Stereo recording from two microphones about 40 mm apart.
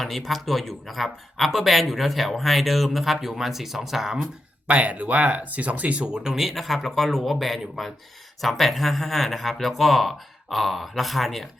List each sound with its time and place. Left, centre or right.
0.0 s speech: centre
4.7 s speech: right
6.1 s speech: centre
6.3 s speech: centre